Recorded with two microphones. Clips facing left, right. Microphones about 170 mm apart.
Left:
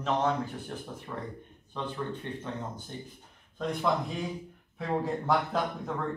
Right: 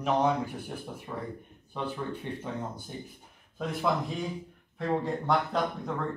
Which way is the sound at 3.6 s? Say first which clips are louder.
Even; 5° right (ahead or behind).